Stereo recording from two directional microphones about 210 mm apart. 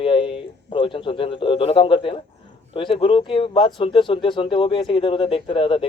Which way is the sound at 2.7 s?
25° left (ahead or behind).